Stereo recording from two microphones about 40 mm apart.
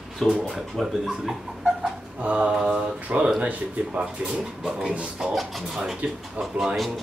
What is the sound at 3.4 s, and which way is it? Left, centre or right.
Speech, right.